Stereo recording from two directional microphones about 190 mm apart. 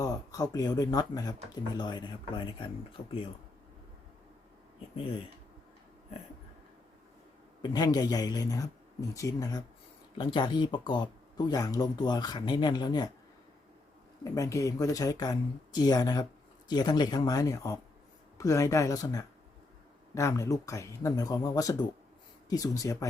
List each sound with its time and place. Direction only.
0.0 s speech: 20° left (ahead or behind)
7.6 s speech: 20° left (ahead or behind)
14.3 s speech: 15° left (ahead or behind)